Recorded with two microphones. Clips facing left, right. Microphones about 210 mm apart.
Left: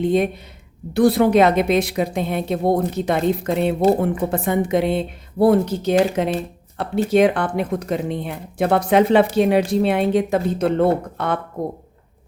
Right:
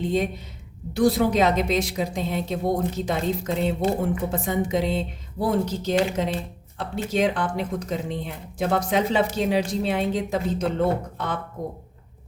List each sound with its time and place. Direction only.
0.0 s a woman's voice: 60° left (ahead or behind)